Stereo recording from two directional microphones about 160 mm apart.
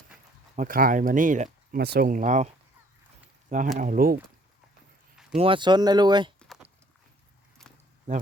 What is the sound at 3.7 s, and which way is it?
Speech, 60° right (ahead or behind).